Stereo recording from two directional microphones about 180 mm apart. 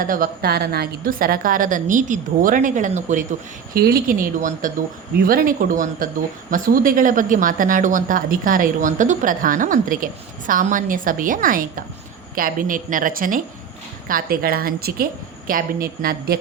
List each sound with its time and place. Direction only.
0.0 s a woman's voice: 50° right (ahead or behind)
3.8 s a woman's voice: 55° right (ahead or behind)